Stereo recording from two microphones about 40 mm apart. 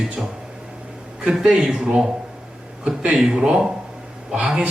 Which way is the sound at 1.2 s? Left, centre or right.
Centre.